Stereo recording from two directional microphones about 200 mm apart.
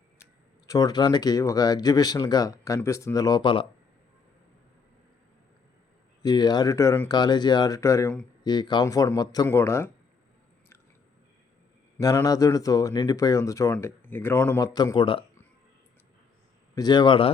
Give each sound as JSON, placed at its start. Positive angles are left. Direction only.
{"t": 0.7, "sound": "speech", "side_deg": 20}
{"t": 6.2, "sound": "speech", "side_deg": 20}
{"t": 11.9, "sound": "speech", "side_deg": 15}
{"t": 16.7, "sound": "speech", "side_deg": 20}